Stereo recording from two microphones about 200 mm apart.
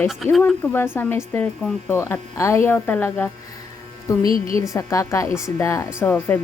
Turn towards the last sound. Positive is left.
turn(degrees=10)  # may be behind; listen again after turning